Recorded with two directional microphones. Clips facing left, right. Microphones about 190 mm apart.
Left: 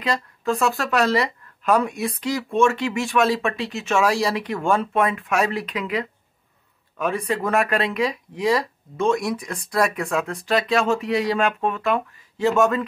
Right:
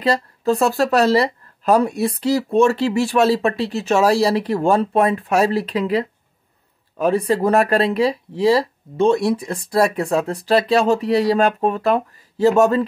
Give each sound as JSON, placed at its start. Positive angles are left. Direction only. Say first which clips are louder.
{"t": 0.0, "sound": "speech", "louder": "right 6 dB", "side_deg": -35}